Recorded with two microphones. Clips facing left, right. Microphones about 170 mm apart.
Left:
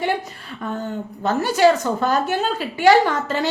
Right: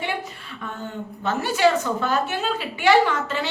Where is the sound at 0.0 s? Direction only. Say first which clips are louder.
Left 5 dB; 40° left (ahead or behind).